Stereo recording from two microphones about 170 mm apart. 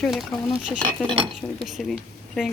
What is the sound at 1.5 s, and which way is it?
Speech, centre (ahead or behind).